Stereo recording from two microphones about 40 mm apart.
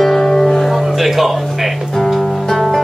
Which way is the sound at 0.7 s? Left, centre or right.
Centre.